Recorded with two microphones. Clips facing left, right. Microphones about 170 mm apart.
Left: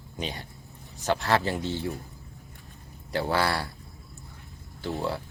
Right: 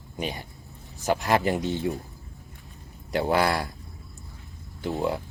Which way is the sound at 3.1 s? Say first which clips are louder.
Right 3 dB; 20° right (ahead or behind).